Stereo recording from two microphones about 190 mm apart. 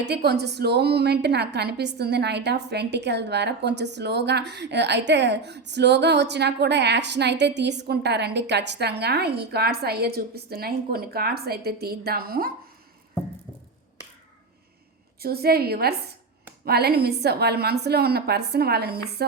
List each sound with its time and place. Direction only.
0.0 s a woman's voice: 60° right (ahead or behind)
15.2 s a woman's voice: 55° right (ahead or behind)